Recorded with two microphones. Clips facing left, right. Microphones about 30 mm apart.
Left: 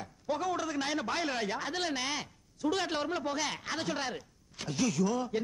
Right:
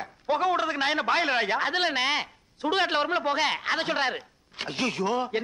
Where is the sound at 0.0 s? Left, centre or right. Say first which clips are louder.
Right 8 dB; right.